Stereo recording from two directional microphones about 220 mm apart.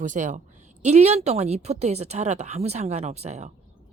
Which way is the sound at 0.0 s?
35° right (ahead or behind).